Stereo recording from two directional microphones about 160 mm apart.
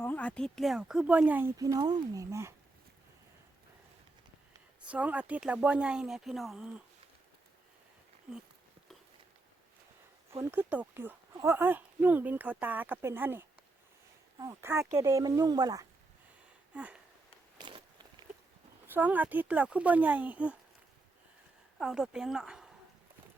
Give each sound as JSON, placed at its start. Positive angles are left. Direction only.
{"t": 0.0, "sound": "speech", "side_deg": 10}
{"t": 4.9, "sound": "speech", "side_deg": -10}
{"t": 10.3, "sound": "speech", "side_deg": -15}
{"t": 16.7, "sound": "speech", "side_deg": -10}
{"t": 17.6, "sound": "walk", "side_deg": -30}
{"t": 18.9, "sound": "speech", "side_deg": -10}
{"t": 21.8, "sound": "speech", "side_deg": -5}